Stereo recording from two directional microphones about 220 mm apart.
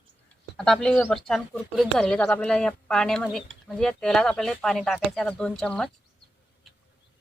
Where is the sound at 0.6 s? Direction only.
5° left (ahead or behind).